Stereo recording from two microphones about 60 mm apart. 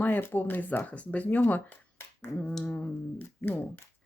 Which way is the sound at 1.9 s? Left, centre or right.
Left.